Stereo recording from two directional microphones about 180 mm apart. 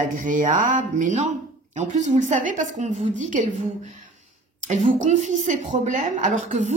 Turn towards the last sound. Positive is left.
turn(degrees=-45)  # may be behind; listen again after turning